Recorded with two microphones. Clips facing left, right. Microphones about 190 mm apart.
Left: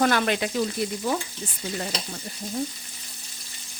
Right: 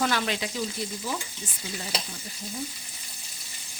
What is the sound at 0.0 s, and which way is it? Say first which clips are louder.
Frying: left 5 dB; 55° left (ahead or behind).